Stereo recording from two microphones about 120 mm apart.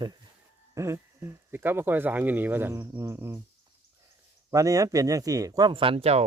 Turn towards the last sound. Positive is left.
turn(degrees=-55)  # may be behind; listen again after turning